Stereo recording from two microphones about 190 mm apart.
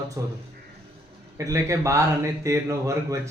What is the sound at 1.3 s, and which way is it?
Speech, 15° right (ahead or behind).